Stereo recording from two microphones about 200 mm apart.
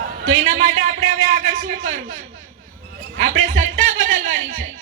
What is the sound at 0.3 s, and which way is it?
A man's voice, 40° right (ahead or behind).